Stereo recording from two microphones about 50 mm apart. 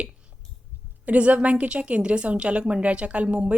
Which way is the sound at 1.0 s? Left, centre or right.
Right.